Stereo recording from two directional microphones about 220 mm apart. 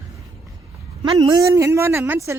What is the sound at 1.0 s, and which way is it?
A man's voice, 20° right (ahead or behind).